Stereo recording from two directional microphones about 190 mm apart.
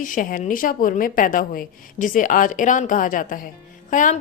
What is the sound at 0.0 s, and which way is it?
A woman's voice, 45° left (ahead or behind).